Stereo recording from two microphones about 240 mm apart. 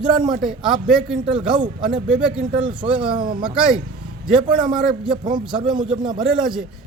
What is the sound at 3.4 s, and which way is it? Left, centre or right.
Speech, centre.